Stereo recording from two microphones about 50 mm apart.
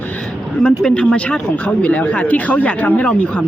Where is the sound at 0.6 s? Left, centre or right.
Centre.